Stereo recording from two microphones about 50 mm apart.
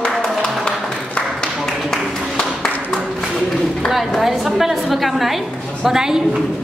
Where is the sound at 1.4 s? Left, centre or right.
Centre.